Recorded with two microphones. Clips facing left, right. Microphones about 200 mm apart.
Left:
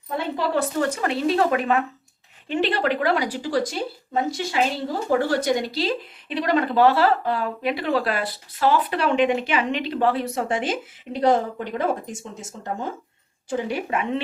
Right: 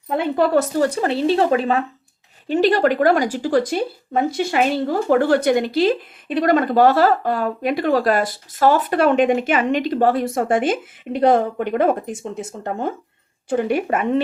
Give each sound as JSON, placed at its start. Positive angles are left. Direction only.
{"t": 0.1, "sound": "speech", "side_deg": -55}
{"t": 2.5, "sound": "a woman's voice", "side_deg": -40}